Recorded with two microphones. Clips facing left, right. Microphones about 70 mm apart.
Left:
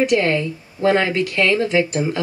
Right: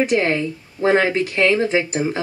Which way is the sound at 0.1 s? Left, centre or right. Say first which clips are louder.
Left 1 dB; right.